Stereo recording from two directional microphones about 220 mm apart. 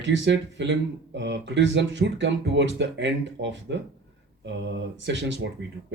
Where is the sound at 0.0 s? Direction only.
55° right (ahead or behind).